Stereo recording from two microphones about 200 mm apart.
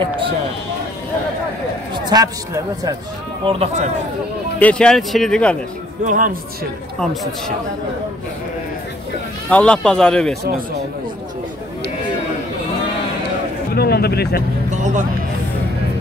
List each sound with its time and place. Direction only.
2.0 s a man's voice: 20° right (ahead or behind)
3.4 s speech: 30° right (ahead or behind)
4.6 s speech: 5° left (ahead or behind)
6.0 s speech: 45° right (ahead or behind)
9.5 s speech: 5° left (ahead or behind)
13.7 s speech: 50° left (ahead or behind)
14.7 s music: 35° right (ahead or behind)